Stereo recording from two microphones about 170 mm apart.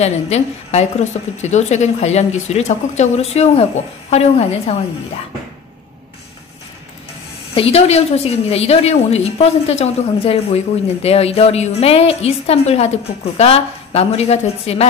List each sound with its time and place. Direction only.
0.0 s a woman's voice: 40° left (ahead or behind)
7.5 s a woman's voice: 35° left (ahead or behind)